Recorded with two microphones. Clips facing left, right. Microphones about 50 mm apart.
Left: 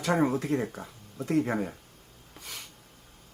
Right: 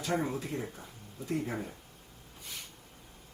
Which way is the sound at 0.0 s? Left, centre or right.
Left.